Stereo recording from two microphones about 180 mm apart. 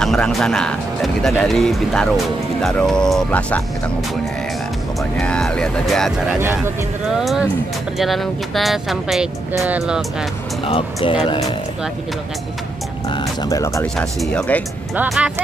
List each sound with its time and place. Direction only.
0.0 s speech: centre (ahead or behind)
5.2 s speech: 5° left (ahead or behind)
10.6 s speech: 30° left (ahead or behind)
13.1 s speech: 20° left (ahead or behind)
13.9 s speech: 5° left (ahead or behind)